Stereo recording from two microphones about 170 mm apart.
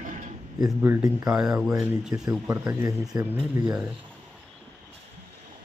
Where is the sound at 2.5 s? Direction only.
20° right (ahead or behind).